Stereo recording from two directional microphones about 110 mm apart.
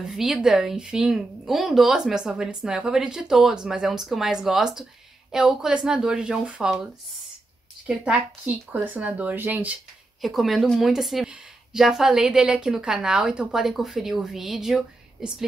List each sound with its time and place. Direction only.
0.0 s a woman's voice: 5° right (ahead or behind)
7.8 s a woman's voice: 10° right (ahead or behind)
10.2 s a woman's voice: centre (ahead or behind)